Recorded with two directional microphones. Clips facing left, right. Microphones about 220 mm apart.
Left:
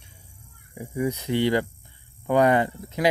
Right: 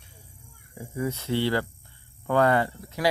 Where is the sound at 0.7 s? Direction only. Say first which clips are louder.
Left 4 dB; 15° left (ahead or behind).